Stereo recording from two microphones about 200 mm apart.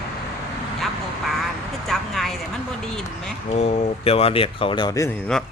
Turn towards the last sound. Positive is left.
turn(degrees=5)  # may be behind; listen again after turning